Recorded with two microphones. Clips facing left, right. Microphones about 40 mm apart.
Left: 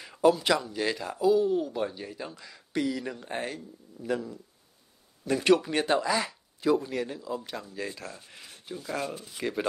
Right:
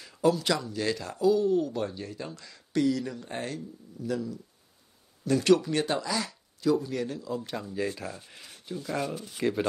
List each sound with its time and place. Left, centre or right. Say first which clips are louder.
0.0 s speech: left 2 dB; centre
4.0 s speech: left 1 dB; left
5.2 s speech: right 1 dB; centre
7.6 s speech: right 4 dB; centre